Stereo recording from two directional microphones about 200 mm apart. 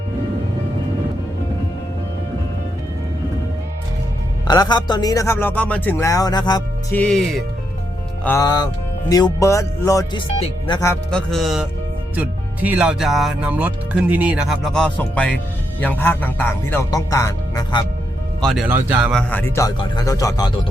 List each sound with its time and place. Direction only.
4.4 s speech: 20° left (ahead or behind)
6.9 s speech: 5° left (ahead or behind)
8.2 s speech: 15° left (ahead or behind)
11.1 s speech: centre (ahead or behind); by 17.8 s 20° left (ahead or behind)
18.4 s speech: 5° right (ahead or behind)
19.3 s speech: 10° left (ahead or behind)